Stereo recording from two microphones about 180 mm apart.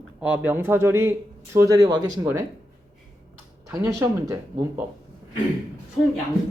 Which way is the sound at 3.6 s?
15° right (ahead or behind).